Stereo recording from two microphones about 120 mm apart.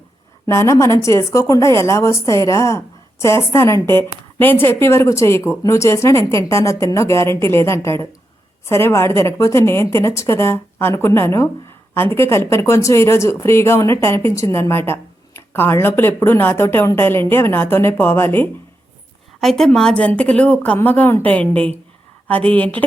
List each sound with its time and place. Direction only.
0.4 s a woman's voice: 25° left (ahead or behind)
19.4 s a woman's voice: 5° left (ahead or behind)